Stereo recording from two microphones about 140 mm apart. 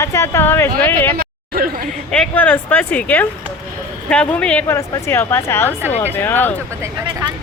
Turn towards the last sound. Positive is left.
turn(degrees=15)  # may be behind; listen again after turning